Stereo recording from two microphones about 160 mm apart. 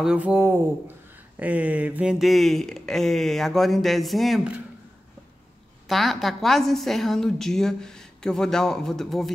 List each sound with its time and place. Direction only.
0.0 s a woman's voice: 5° right (ahead or behind)
5.9 s a woman's voice: centre (ahead or behind)